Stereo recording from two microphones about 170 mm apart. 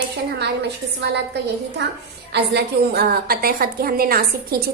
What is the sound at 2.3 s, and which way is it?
A woman's voice, 75° right (ahead or behind).